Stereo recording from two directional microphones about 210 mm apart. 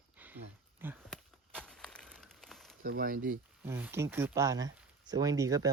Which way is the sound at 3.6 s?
10° right (ahead or behind).